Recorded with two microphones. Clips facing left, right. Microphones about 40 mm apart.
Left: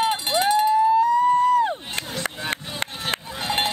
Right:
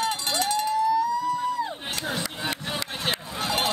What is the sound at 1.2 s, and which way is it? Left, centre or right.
Music, left.